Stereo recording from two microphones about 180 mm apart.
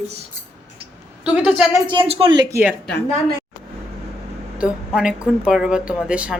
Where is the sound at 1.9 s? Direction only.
30° right (ahead or behind).